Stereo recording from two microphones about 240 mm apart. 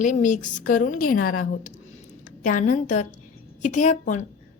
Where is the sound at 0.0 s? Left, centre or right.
Left.